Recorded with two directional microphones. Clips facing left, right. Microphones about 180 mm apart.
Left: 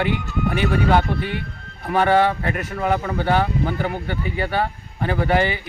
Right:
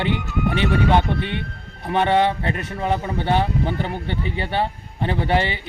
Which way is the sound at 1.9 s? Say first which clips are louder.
Left 1 dB; 25° right (ahead or behind).